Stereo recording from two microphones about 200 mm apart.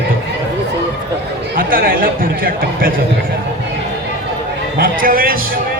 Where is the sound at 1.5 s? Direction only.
45° right (ahead or behind).